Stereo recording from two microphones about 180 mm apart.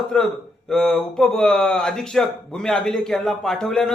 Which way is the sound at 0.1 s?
5° left (ahead or behind).